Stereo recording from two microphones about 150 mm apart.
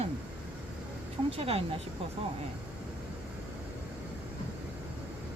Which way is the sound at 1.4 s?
40° right (ahead or behind).